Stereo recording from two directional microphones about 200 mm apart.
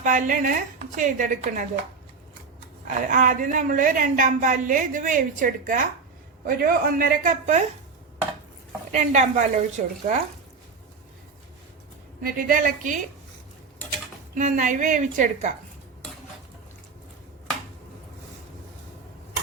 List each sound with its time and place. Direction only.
0.0 s a woman's voice: 40° right (ahead or behind)
2.8 s a woman's voice: 40° right (ahead or behind)
8.9 s a woman's voice: 35° right (ahead or behind)
12.2 s a woman's voice: 45° right (ahead or behind)
14.3 s a woman's voice: 40° right (ahead or behind)